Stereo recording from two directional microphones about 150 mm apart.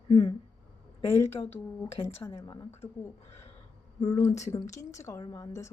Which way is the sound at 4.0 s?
20° left (ahead or behind).